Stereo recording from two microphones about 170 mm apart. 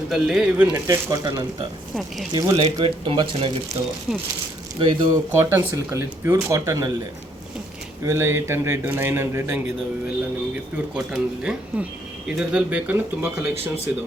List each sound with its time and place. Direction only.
0.1 s speech: centre (ahead or behind); by 3.6 s 30° right (ahead or behind)
4.8 s speech: 30° right (ahead or behind)
5.3 s speech: 15° right (ahead or behind)
8.0 s speech: 15° right (ahead or behind)
10.9 s speech: 5° right (ahead or behind)